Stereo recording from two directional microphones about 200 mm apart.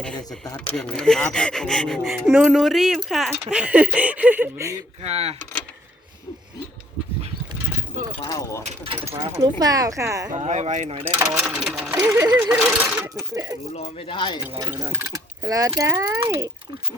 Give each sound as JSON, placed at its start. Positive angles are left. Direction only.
{"t": 0.0, "sound": "speech", "side_deg": 5}
{"t": 5.0, "sound": "speech", "side_deg": -30}
{"t": 8.2, "sound": "speech", "side_deg": 20}
{"t": 8.6, "sound": "speech", "side_deg": -30}
{"t": 9.0, "sound": "speech", "side_deg": -20}
{"t": 10.3, "sound": "speech", "side_deg": -35}
{"t": 11.0, "sound": "speech", "side_deg": -10}
{"t": 11.4, "sound": "speech", "side_deg": 0}
{"t": 12.0, "sound": "speech", "side_deg": -15}
{"t": 12.5, "sound": "speech", "side_deg": -5}
{"t": 13.1, "sound": "speech", "side_deg": -15}
{"t": 13.7, "sound": "speech", "side_deg": 30}
{"t": 14.7, "sound": "speech", "side_deg": -15}